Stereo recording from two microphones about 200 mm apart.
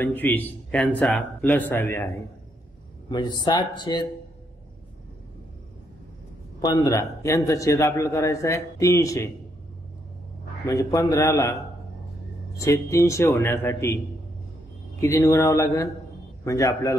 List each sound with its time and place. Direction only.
0.0 s a man's voice: 10° left (ahead or behind)
6.6 s a man's voice: 20° left (ahead or behind)
10.7 s a man's voice: 15° left (ahead or behind)
15.0 s a man's voice: 15° left (ahead or behind)